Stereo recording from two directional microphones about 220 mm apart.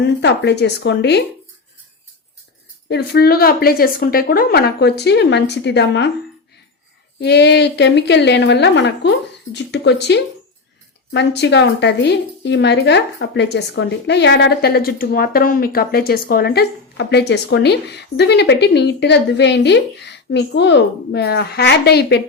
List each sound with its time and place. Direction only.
0.0 s a woman's voice: 50° left (ahead or behind)
2.9 s a woman's voice: 45° left (ahead or behind)
7.2 s a woman's voice: 50° left (ahead or behind)